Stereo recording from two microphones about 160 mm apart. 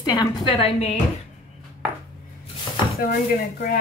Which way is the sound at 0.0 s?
25° left (ahead or behind).